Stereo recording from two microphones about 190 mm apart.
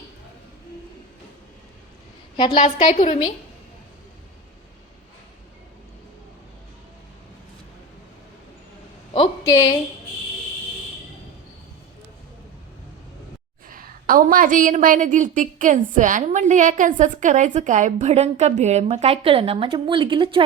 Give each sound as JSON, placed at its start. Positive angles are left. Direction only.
{"t": 2.3, "sound": "a woman's voice", "side_deg": 20}
{"t": 2.6, "sound": "a woman's voice", "side_deg": 40}
{"t": 9.1, "sound": "a woman's voice", "side_deg": 30}
{"t": 13.7, "sound": "a woman's voice", "side_deg": -45}